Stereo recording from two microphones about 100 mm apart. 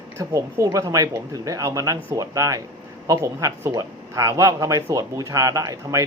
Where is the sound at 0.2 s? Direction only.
30° right (ahead or behind).